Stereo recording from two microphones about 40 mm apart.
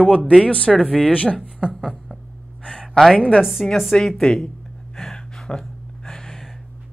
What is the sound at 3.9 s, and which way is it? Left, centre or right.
Speech, centre.